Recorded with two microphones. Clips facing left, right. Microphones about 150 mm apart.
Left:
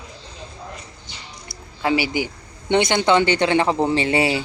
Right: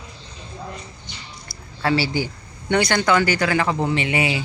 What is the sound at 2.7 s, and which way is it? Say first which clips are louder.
Speech: left 2 dB; 20° left (ahead or behind).